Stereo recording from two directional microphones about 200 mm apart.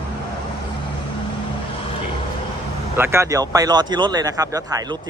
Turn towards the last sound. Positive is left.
turn(degrees=-20)  # may be behind; listen again after turning